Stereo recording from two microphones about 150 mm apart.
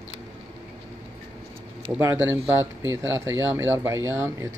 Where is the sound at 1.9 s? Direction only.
15° right (ahead or behind).